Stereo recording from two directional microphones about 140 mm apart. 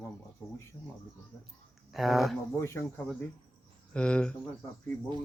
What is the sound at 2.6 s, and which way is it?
Speech, 20° left (ahead or behind).